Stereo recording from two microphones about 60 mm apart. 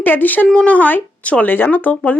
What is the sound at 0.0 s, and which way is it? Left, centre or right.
Speech, left.